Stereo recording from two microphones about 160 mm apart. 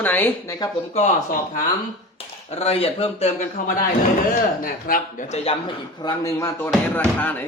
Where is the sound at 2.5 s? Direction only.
40° left (ahead or behind).